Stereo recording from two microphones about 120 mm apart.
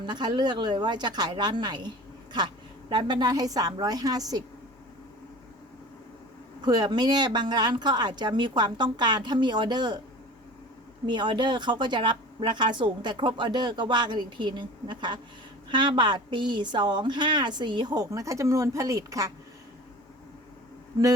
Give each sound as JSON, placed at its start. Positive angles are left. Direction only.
{"t": 0.0, "sound": "a woman's voice", "side_deg": -40}
{"t": 2.9, "sound": "a woman's voice", "side_deg": -40}
{"t": 6.7, "sound": "a woman's voice", "side_deg": -35}
{"t": 11.0, "sound": "a woman's voice", "side_deg": -40}